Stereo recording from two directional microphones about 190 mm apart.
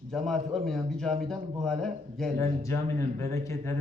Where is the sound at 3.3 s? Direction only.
15° left (ahead or behind).